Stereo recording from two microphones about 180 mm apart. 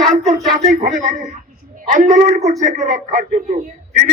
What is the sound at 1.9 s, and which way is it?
A man's voice, 45° right (ahead or behind).